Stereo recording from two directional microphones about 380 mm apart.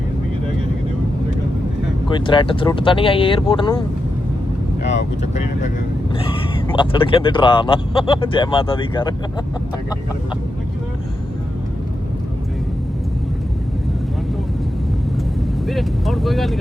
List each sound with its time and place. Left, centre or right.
2.0 s speech: centre
4.8 s speech: left
15.6 s speech: centre